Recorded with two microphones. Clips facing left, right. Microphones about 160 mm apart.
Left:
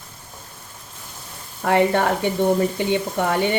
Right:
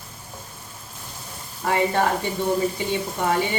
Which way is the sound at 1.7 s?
65° left (ahead or behind).